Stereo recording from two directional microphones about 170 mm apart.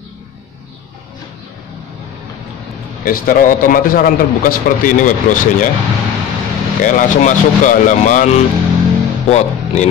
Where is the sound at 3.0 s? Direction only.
55° left (ahead or behind).